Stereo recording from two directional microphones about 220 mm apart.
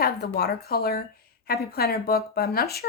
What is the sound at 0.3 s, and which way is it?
A woman's voice, 45° left (ahead or behind).